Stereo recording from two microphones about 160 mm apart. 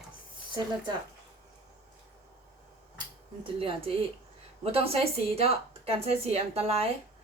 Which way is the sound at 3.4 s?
35° right (ahead or behind).